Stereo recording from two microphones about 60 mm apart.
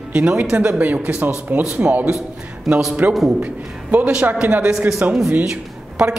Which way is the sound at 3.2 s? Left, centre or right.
Right.